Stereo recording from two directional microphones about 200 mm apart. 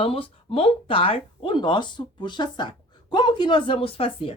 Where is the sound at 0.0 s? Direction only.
30° left (ahead or behind).